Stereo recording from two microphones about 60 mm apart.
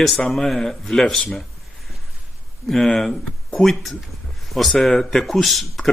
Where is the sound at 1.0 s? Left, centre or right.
Centre.